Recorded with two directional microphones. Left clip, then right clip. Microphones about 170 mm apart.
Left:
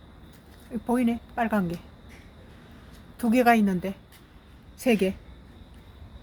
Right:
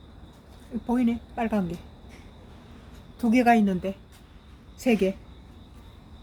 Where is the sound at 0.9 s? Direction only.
20° left (ahead or behind).